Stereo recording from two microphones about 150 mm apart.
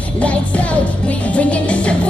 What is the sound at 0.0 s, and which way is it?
Music, 10° left (ahead or behind).